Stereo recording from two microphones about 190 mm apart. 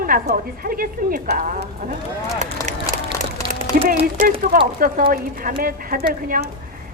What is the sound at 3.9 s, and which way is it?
Speech, 35° right (ahead or behind).